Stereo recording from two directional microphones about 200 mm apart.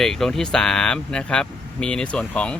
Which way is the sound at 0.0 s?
Centre (ahead or behind).